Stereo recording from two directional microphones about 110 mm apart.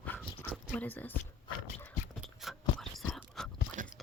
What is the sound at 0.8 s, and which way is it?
Speech, 15° left (ahead or behind).